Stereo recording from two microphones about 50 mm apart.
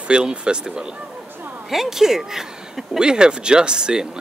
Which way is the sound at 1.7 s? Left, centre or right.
Centre.